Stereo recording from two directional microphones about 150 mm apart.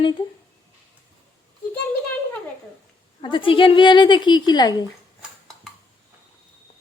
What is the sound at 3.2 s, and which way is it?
A woman's voice, 35° left (ahead or behind).